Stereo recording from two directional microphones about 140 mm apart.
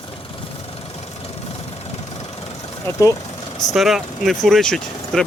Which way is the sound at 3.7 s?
Centre (ahead or behind).